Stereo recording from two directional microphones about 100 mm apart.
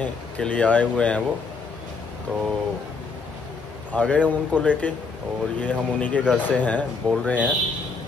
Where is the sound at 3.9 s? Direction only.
15° left (ahead or behind).